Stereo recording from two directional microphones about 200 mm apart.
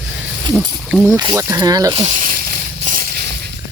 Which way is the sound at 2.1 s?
45° right (ahead or behind).